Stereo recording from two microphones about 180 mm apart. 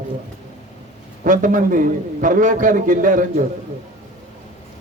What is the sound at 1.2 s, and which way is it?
A man's voice, 45° right (ahead or behind).